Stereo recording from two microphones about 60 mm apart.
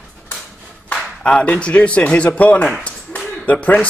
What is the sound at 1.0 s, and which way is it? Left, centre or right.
Speech, centre.